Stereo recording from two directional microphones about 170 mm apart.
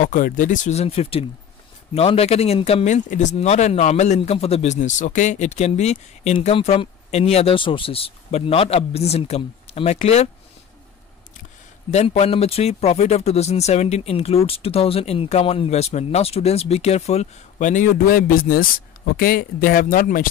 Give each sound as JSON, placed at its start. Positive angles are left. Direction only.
{"t": 0.0, "sound": "speech", "side_deg": 50}
{"t": 11.9, "sound": "speech", "side_deg": 40}